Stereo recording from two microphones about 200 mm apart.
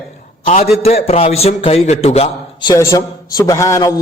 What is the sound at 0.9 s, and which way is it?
A man's voice, 30° left (ahead or behind).